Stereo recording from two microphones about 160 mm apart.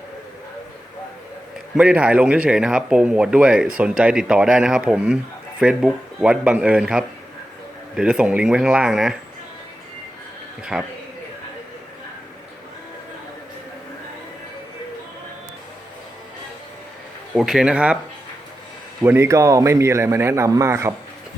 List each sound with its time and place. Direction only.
1.7 s a man's voice: 5° right (ahead or behind)
10.6 s speech: 5° right (ahead or behind)
17.3 s speech: 5° right (ahead or behind)
19.0 s a man's voice: 15° right (ahead or behind)